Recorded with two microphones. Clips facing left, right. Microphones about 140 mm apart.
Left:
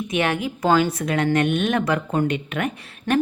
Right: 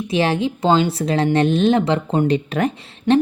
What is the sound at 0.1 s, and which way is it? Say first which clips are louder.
A woman's voice: right 5 dB; 30° right (ahead or behind).